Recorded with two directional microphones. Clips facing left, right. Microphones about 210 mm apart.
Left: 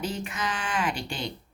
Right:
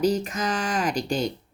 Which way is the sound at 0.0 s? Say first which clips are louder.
Right 8 dB; 40° right (ahead or behind).